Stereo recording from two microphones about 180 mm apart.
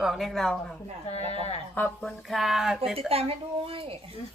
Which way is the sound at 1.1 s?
35° left (ahead or behind).